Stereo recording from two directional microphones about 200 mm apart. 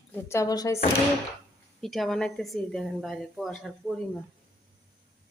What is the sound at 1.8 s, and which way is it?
A woman's voice, centre (ahead or behind).